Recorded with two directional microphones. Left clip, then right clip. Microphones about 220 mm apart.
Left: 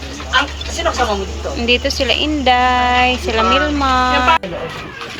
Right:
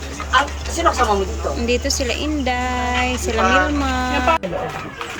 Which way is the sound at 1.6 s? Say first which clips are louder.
Left 6 dB; 5° right (ahead or behind).